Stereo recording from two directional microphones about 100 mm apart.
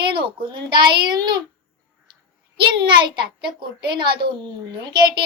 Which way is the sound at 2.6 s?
55° right (ahead or behind).